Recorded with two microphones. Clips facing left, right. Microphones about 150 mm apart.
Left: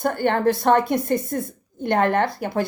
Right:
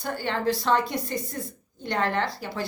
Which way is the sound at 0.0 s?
55° left (ahead or behind).